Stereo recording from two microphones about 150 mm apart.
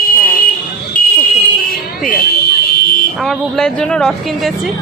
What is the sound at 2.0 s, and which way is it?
Buzzer, 80° left.